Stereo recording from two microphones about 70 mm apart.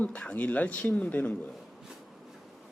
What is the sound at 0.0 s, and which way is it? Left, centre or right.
Speech, centre.